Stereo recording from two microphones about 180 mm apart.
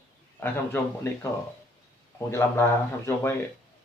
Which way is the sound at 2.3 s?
15° left (ahead or behind).